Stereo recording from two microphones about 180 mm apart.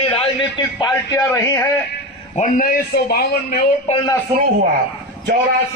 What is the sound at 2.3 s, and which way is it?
Speech, 50° left (ahead or behind).